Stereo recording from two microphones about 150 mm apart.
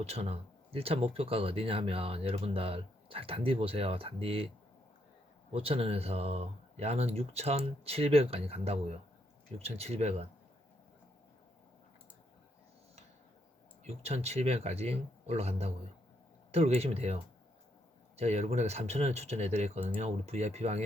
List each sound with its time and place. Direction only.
0.0 s speech: 45° right (ahead or behind)
5.5 s speech: 40° right (ahead or behind)
13.8 s speech: 45° right (ahead or behind)
18.2 s speech: 45° right (ahead or behind)